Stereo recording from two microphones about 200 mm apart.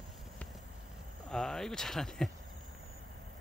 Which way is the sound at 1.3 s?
Centre (ahead or behind).